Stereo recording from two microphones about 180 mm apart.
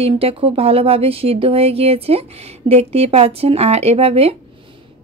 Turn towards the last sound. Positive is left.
turn(degrees=-30)  # may be behind; listen again after turning